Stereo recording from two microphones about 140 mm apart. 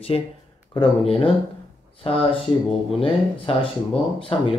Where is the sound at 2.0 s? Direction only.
40° left (ahead or behind).